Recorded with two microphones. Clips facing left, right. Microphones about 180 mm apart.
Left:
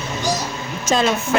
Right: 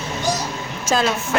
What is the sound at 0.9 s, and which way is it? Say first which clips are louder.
Speech: left 2 dB; centre (ahead or behind).